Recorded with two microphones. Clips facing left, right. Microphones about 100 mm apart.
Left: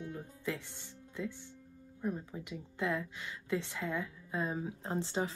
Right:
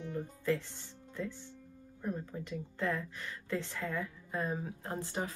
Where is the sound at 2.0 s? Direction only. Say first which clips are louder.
Left 1 dB; 10° left (ahead or behind).